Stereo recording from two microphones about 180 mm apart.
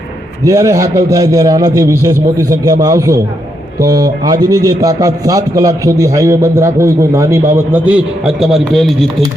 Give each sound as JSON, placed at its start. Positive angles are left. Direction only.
{"t": 0.4, "sound": "a man's voice", "side_deg": -20}